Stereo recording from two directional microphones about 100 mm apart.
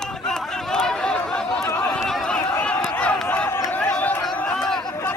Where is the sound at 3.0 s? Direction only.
15° left (ahead or behind).